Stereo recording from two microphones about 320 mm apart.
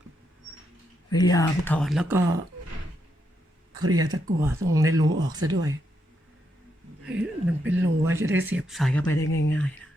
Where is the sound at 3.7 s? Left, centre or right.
Right.